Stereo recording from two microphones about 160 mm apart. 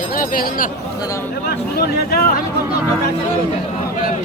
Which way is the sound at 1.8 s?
80° left.